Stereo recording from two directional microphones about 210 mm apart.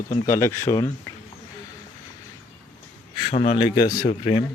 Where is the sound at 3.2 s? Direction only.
30° left (ahead or behind).